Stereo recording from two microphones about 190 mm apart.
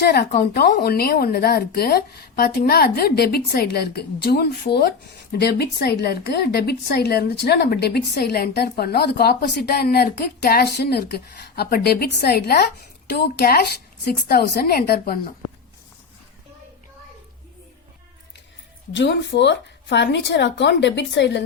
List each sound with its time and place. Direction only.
0.0 s speech: 60° left (ahead or behind)
18.9 s speech: 65° left (ahead or behind)